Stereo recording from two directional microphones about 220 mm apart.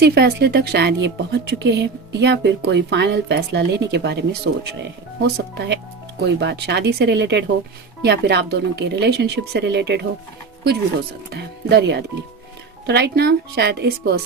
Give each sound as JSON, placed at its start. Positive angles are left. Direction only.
{"t": 0.0, "sound": "a woman's voice", "side_deg": -45}
{"t": 11.3, "sound": "a woman's voice", "side_deg": -50}